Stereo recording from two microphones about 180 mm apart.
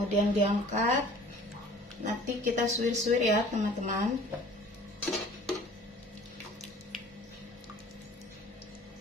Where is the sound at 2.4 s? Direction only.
45° right (ahead or behind).